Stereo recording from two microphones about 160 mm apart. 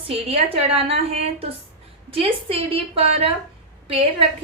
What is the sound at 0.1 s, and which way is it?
A woman's voice, 40° right (ahead or behind).